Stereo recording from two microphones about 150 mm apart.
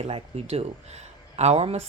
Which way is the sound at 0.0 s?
45° right (ahead or behind).